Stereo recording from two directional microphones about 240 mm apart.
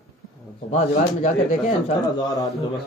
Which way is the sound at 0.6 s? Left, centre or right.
Left.